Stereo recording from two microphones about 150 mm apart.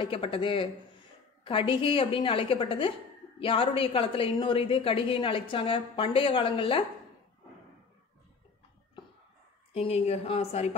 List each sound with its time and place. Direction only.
0.0 s a woman's voice: 35° left (ahead or behind)
9.8 s speech: 40° left (ahead or behind)